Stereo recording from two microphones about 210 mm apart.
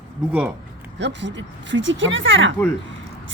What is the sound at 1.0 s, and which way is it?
Speech, 60° right (ahead or behind).